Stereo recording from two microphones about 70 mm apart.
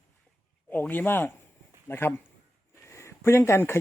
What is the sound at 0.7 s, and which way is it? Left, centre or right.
Speech, left.